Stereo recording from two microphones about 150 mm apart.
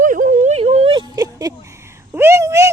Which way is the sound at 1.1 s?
25° right (ahead or behind).